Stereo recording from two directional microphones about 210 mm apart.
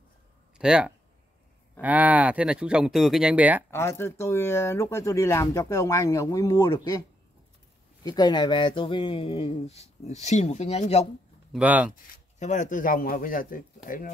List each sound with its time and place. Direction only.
0.6 s speech: 5° right (ahead or behind)
3.7 s speech: 10° left (ahead or behind)
8.0 s speech: 20° left (ahead or behind)
11.5 s speech: 5° right (ahead or behind)
11.9 s speech: 35° left (ahead or behind)